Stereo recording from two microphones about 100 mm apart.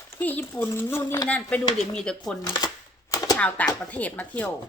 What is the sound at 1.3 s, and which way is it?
Speech, 10° left (ahead or behind).